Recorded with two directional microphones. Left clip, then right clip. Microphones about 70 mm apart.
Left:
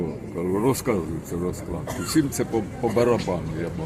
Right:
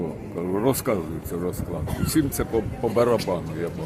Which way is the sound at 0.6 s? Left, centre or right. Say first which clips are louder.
Right 1 dB; right.